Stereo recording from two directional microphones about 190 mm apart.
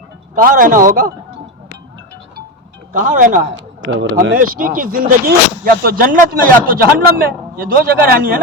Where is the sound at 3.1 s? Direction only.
45° right (ahead or behind).